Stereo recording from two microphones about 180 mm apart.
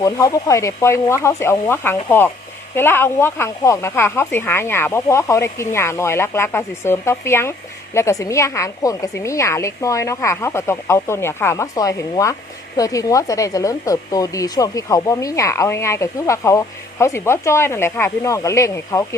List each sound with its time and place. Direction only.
0.0 s a woman's voice: 20° left (ahead or behind)